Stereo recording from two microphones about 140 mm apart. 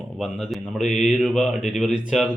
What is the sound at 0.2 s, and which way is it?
A man's voice, centre (ahead or behind).